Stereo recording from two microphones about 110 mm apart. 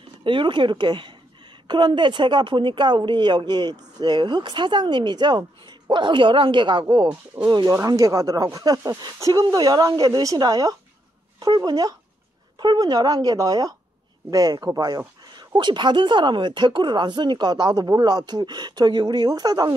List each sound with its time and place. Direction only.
0.2 s a woman's voice: 50° right (ahead or behind)
7.4 s speech: 35° right (ahead or behind)